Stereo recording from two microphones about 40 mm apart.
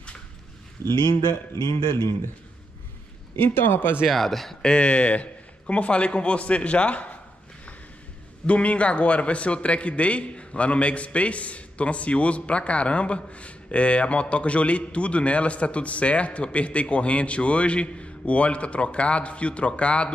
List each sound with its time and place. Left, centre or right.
3.3 s a man's voice: left
4.1 s speech: centre
4.6 s a man's voice: left
8.5 s a man's voice: left